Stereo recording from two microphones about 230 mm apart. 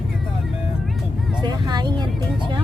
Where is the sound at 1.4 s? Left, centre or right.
Centre.